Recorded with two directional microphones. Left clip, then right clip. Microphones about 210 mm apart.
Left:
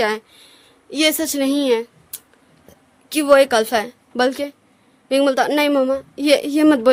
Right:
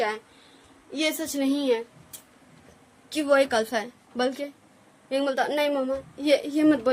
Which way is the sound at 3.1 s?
50° left (ahead or behind).